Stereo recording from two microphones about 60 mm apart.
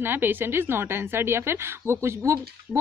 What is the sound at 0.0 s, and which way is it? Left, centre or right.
A woman's voice, right.